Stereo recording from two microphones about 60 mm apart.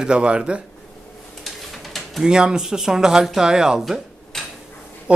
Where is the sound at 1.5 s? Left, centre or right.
Centre.